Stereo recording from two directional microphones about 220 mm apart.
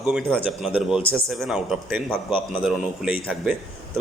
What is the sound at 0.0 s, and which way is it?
A man's voice, centre (ahead or behind).